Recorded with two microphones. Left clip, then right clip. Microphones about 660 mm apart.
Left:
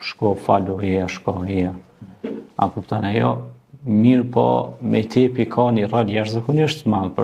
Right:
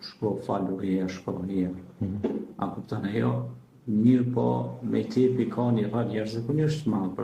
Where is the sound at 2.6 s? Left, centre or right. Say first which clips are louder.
Left 12 dB; left.